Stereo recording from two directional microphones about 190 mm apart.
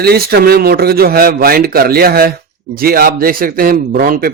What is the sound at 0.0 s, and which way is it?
A man's voice, 55° right (ahead or behind).